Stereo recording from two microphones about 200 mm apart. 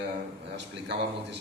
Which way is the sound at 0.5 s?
60° right (ahead or behind).